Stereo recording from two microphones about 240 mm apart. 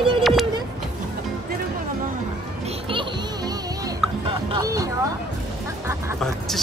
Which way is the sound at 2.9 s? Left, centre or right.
Right.